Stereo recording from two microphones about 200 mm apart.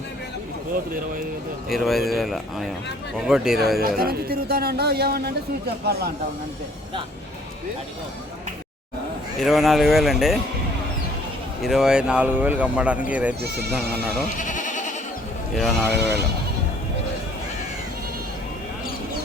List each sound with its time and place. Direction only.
1.7 s speech: centre (ahead or behind)
3.8 s a man's voice: 50° right (ahead or behind)
9.4 s speech: centre (ahead or behind)
11.6 s speech: centre (ahead or behind)
13.4 s a man's voice: 55° right (ahead or behind)
14.3 s goat: 40° left (ahead or behind)
15.5 s speech: centre (ahead or behind)